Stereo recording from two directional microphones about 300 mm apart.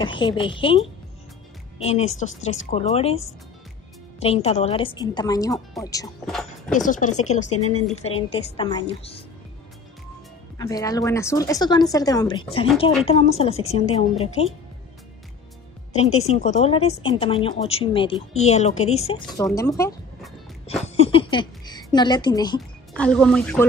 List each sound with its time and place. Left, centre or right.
0.0 s speech: centre
1.8 s a woman's voice: left
4.2 s speech: centre
6.7 s a woman's voice: left
10.6 s a woman's voice: centre
15.9 s a woman's voice: left
19.4 s speech: centre
20.8 s a woman's voice: centre
22.6 s speech: centre